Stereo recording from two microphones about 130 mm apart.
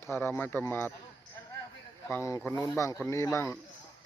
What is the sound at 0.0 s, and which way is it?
Speech, 20° left (ahead or behind).